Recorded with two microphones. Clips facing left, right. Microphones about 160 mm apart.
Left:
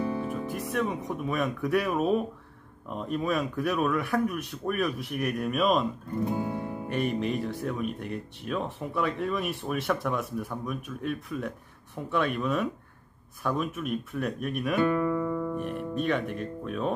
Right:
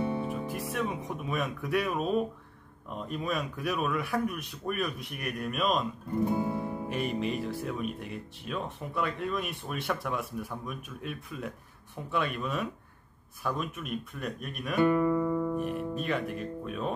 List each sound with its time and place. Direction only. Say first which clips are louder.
0.0 s music: left 1 dB; 25° right (ahead or behind)
0.3 s speech: left 2 dB; centre (ahead or behind)
14.8 s speech: right 2 dB; 15° right (ahead or behind)